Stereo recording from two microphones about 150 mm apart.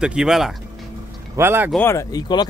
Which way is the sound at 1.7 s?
15° left (ahead or behind).